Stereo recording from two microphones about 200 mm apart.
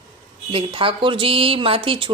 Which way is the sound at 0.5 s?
25° right (ahead or behind).